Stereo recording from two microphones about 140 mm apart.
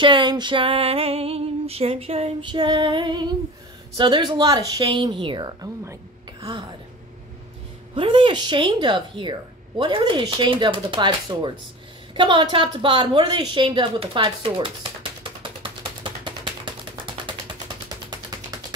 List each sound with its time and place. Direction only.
0.0 s a woman's voice: 35° right (ahead or behind)
7.9 s a woman's voice: 35° right (ahead or behind)
15.6 s a sound: 35° right (ahead or behind)